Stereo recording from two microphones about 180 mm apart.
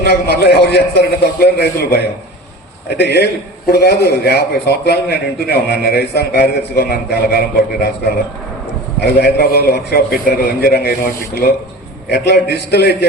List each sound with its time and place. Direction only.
0.0 s a man's voice: 65° left (ahead or behind)
9.0 s a man's voice: 65° left (ahead or behind)